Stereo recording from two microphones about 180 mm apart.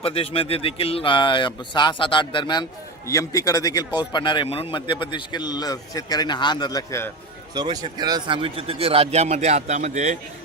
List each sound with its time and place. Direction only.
0.0 s speech: 35° left (ahead or behind); by 7.1 s 15° left (ahead or behind)
7.5 s a man's voice: 20° right (ahead or behind); by 10.2 s 40° right (ahead or behind)